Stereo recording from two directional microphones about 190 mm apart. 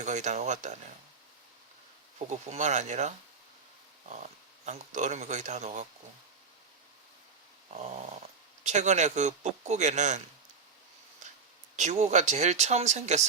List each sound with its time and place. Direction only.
0.0 s speech: 40° right (ahead or behind)
2.1 s speech: 40° right (ahead or behind)
4.1 s speech: 40° right (ahead or behind)
7.7 s speech: 35° right (ahead or behind)
11.8 s speech: 40° right (ahead or behind)